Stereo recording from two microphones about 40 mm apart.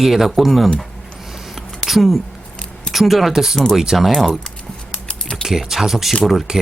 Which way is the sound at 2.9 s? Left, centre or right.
Centre.